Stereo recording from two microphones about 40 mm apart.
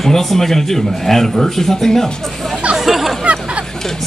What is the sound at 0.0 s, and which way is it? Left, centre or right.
Speech, centre.